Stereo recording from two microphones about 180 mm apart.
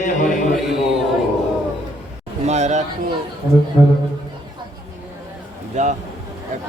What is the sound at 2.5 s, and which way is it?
Speech, 40° right (ahead or behind).